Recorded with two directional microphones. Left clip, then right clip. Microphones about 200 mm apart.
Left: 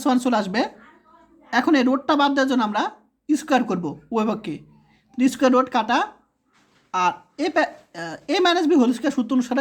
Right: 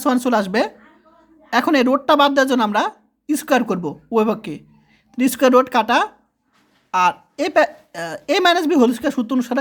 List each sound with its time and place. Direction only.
0.0 s a woman's voice: 25° right (ahead or behind)